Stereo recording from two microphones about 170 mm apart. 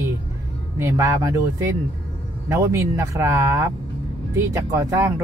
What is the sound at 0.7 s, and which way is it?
Speech, 20° right (ahead or behind).